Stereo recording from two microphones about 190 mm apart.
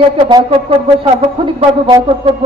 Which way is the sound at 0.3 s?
25° right (ahead or behind).